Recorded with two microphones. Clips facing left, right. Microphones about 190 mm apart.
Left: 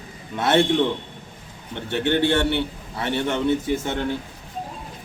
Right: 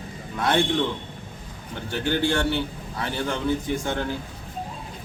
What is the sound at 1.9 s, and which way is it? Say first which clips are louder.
A man's voice: left 4 dB; 25° left (ahead or behind).